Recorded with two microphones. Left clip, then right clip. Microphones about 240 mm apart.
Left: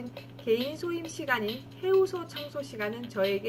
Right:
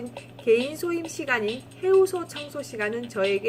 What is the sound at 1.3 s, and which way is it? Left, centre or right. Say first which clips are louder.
Speech: right 4 dB; right.